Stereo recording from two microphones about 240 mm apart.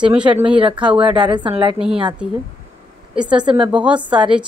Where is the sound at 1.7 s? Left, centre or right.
Centre.